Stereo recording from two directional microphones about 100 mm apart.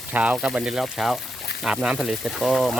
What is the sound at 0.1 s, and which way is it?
Speech, 15° right (ahead or behind).